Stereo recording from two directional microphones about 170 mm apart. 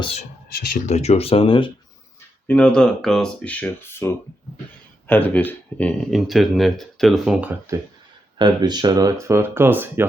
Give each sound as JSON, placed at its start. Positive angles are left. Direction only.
{"t": 0.0, "sound": "speech", "side_deg": 35}
{"t": 0.6, "sound": "speech", "side_deg": 50}
{"t": 2.5, "sound": "speech", "side_deg": 5}
{"t": 7.7, "sound": "speech", "side_deg": -15}